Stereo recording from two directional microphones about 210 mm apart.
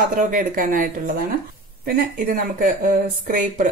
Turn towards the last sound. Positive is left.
turn(degrees=-40)  # may be behind; listen again after turning